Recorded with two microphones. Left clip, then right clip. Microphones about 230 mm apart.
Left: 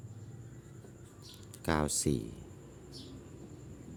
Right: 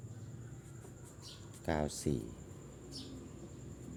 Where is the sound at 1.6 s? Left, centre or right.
Left.